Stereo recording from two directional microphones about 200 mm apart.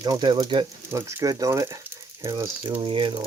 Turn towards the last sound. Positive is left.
turn(degrees=-25)  # may be behind; listen again after turning